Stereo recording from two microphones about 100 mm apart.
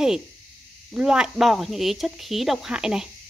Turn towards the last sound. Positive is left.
turn(degrees=-5)  # may be behind; listen again after turning